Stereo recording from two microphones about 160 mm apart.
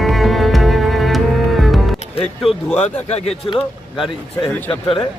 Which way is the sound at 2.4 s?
5° left (ahead or behind).